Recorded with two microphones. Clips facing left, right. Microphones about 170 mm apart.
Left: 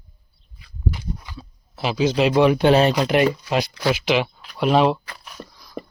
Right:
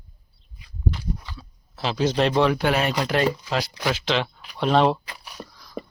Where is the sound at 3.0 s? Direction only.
20° left (ahead or behind).